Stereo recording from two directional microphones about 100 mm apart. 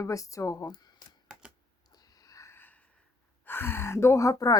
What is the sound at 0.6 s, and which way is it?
Speech, 45° left (ahead or behind).